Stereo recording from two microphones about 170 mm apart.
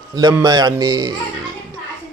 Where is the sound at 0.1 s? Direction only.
20° right (ahead or behind).